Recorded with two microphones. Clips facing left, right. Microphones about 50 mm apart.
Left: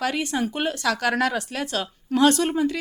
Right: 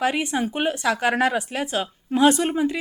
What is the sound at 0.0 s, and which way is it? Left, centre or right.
A woman's voice, right.